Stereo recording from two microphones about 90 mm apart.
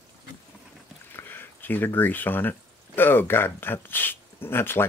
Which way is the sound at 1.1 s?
25° left (ahead or behind).